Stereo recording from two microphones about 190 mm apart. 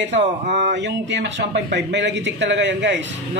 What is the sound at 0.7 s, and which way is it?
A man's voice, 65° right (ahead or behind).